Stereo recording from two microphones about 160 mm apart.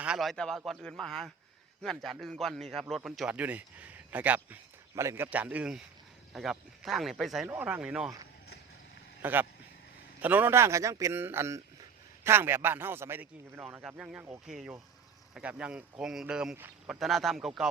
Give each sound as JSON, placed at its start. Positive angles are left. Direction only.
{"t": 0.0, "sound": "a man's voice", "side_deg": -5}
{"t": 7.4, "sound": "a man's voice", "side_deg": -10}
{"t": 9.2, "sound": "a man's voice", "side_deg": -10}